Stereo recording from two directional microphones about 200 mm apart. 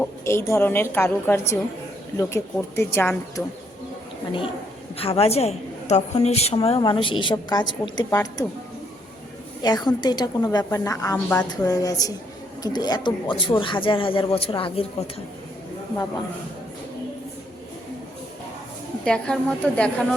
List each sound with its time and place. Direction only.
0.0 s a woman's voice: 10° left (ahead or behind)
4.9 s a woman's voice: 30° left (ahead or behind)
9.6 s a woman's voice: 20° left (ahead or behind)
19.0 s a woman's voice: 5° left (ahead or behind)